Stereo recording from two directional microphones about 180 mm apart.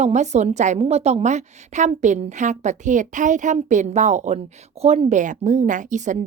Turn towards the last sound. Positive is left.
turn(degrees=-45)  # may be behind; listen again after turning